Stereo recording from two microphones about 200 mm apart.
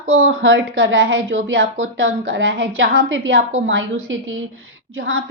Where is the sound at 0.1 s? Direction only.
75° right (ahead or behind).